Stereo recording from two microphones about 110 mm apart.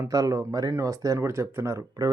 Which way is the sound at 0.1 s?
30° right (ahead or behind).